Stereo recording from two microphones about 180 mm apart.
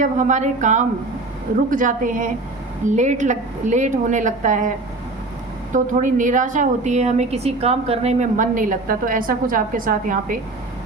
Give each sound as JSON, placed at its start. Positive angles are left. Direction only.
{"t": 0.0, "sound": "a woman's voice", "side_deg": -40}
{"t": 5.7, "sound": "a woman's voice", "side_deg": -45}